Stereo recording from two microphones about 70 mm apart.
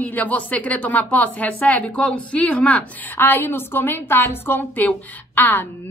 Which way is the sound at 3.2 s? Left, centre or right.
Left.